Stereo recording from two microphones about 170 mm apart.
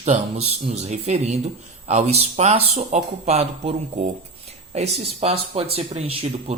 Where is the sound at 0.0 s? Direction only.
40° right (ahead or behind).